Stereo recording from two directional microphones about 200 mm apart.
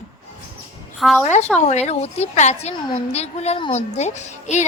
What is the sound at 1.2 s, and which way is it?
A woman's voice, 35° left (ahead or behind).